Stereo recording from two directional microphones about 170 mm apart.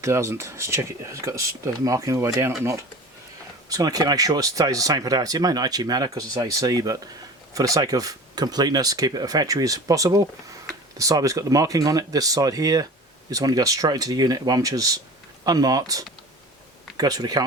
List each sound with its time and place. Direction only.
0.0 s speech: 15° right (ahead or behind)